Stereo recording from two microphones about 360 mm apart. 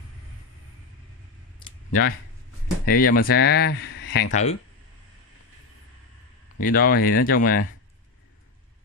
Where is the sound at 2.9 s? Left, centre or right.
Left.